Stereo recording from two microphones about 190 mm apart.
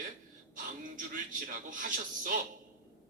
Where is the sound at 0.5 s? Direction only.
45° right (ahead or behind).